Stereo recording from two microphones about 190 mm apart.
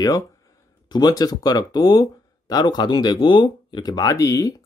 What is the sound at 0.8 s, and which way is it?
Speech, 20° left (ahead or behind).